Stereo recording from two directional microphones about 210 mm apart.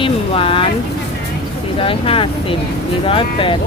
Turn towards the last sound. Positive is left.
turn(degrees=25)  # may be behind; listen again after turning